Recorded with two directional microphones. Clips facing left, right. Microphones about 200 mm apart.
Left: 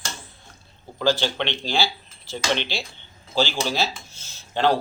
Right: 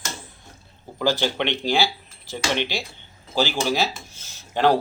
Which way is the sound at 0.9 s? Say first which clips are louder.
Even; 15° right (ahead or behind).